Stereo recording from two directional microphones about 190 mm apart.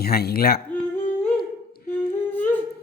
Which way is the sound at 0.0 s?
55° left (ahead or behind).